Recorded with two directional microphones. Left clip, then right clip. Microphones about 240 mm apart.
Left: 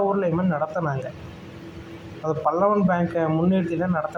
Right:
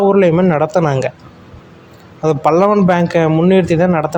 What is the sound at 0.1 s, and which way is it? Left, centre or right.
Speech, right.